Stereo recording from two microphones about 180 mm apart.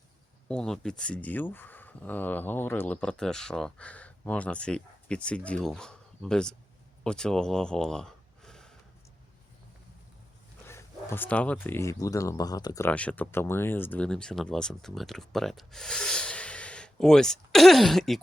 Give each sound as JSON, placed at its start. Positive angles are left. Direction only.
{"t": 0.4, "sound": "speech", "side_deg": 5}
{"t": 10.7, "sound": "speech", "side_deg": 15}
{"t": 12.9, "sound": "speech", "side_deg": 5}